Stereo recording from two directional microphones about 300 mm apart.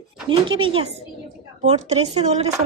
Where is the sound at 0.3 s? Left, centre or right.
Centre.